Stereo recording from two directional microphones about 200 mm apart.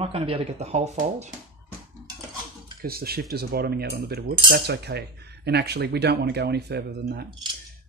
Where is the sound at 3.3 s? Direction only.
50° right (ahead or behind).